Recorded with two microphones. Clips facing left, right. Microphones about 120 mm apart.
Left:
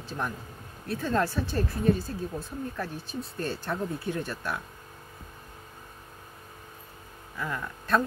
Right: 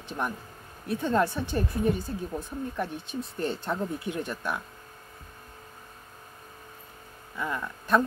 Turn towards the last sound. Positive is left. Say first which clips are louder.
# right 2 dB
turn(degrees=-20)  # may be behind; listen again after turning